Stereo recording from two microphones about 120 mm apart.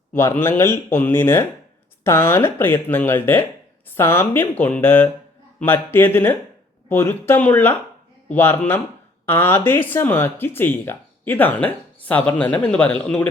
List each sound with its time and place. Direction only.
0.1 s speech: 20° left (ahead or behind)